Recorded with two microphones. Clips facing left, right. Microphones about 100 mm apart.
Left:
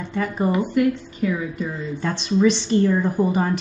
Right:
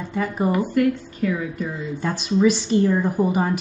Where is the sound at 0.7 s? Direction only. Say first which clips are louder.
Even; 15° left (ahead or behind).